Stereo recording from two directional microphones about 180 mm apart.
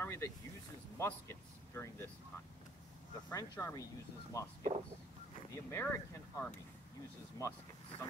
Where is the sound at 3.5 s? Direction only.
15° left (ahead or behind).